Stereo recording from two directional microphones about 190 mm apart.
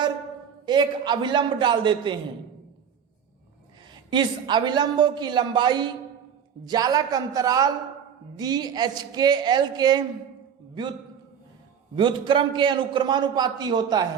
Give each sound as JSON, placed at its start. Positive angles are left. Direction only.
{"t": 0.6, "sound": "a man's voice", "side_deg": -25}
{"t": 4.1, "sound": "a man's voice", "side_deg": -25}
{"t": 11.9, "sound": "a man's voice", "side_deg": -25}